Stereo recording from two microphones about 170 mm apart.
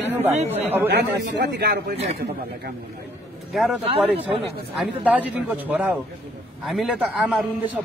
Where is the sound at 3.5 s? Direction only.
Centre (ahead or behind).